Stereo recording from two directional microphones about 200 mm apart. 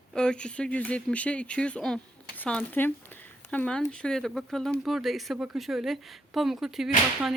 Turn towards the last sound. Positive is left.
turn(degrees=0)  # may be behind; listen again after turning